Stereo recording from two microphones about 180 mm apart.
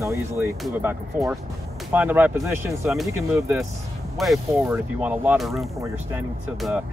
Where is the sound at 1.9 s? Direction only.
10° right (ahead or behind).